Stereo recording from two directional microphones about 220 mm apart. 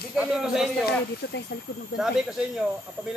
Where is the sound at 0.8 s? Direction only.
50° left (ahead or behind).